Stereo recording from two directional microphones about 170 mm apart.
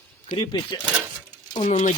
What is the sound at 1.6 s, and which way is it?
Speech, 40° left (ahead or behind).